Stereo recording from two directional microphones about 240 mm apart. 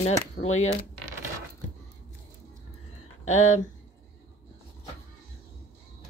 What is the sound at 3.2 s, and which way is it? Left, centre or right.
Speech, left.